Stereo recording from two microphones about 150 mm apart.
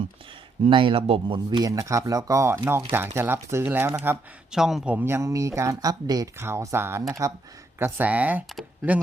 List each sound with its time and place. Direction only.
0.6 s speech: 35° right (ahead or behind)
1.5 s speech: 25° right (ahead or behind)
4.5 s a man's voice: centre (ahead or behind)
4.9 s speech: 15° right (ahead or behind)